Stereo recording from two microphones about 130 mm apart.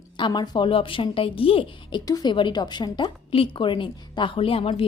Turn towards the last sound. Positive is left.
turn(degrees=45)  # may be behind; listen again after turning